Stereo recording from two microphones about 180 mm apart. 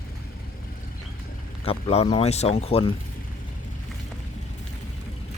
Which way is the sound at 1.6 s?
35° left (ahead or behind).